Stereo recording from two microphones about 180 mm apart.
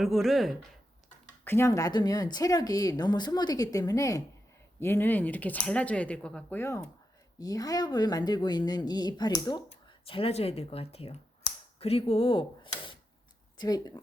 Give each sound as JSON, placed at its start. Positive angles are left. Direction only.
{"t": 0.0, "sound": "speech", "side_deg": 0}
{"t": 1.5, "sound": "speech", "side_deg": 15}